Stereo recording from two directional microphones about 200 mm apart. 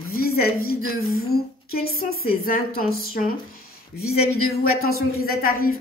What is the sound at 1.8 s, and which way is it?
Speech, 90° left.